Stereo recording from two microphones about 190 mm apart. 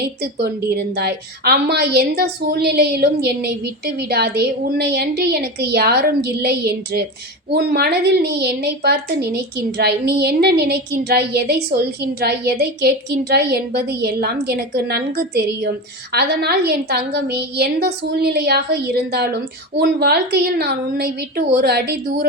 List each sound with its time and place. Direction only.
0.0 s a woman's voice: 55° right (ahead or behind)